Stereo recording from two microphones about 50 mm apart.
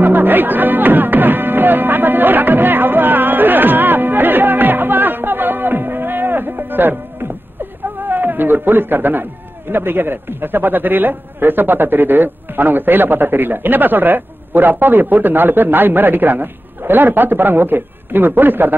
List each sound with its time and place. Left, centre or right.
0.0 s music: right
8.0 s a man's voice: right